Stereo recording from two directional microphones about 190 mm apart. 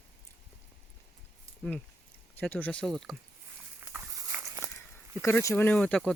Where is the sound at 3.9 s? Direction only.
15° right (ahead or behind).